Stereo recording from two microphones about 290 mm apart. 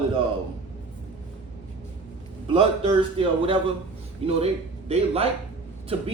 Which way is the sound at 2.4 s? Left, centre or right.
Centre.